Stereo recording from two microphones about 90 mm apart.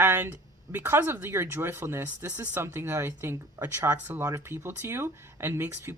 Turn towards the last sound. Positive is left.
turn(degrees=-30)  # may be behind; listen again after turning